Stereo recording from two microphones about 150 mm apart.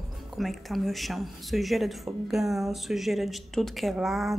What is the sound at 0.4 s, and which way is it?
Speech, centre (ahead or behind).